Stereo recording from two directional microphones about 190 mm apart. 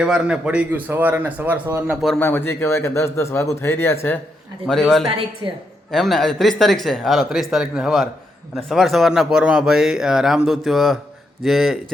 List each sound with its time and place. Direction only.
0.0 s speech: 5° right (ahead or behind)
2.0 s a man's voice: centre (ahead or behind)
4.6 s a man's voice: centre (ahead or behind)
5.4 s a woman's voice: 25° right (ahead or behind)
5.9 s a man's voice: centre (ahead or behind)